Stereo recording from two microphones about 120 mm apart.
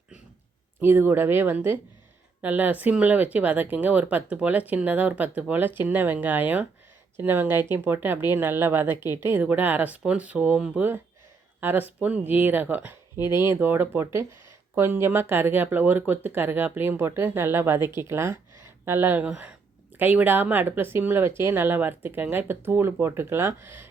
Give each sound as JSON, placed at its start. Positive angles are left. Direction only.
{"t": 0.8, "sound": "speech", "side_deg": -20}